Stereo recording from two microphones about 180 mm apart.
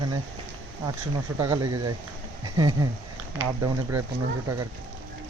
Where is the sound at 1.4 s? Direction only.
20° right (ahead or behind).